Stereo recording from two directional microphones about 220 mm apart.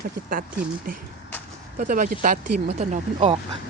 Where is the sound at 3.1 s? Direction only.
25° right (ahead or behind).